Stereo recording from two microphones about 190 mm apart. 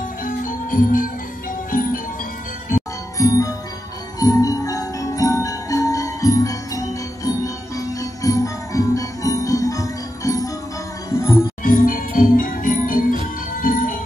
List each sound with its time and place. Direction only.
0.2 s music: 45° left (ahead or behind)
3.2 s music: 15° left (ahead or behind)
11.6 s music: 45° left (ahead or behind)